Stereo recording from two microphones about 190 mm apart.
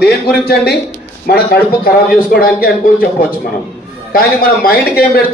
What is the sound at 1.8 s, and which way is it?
A man's voice, 50° left (ahead or behind).